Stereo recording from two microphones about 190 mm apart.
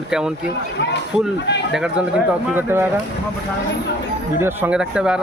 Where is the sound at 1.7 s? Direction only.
5° right (ahead or behind).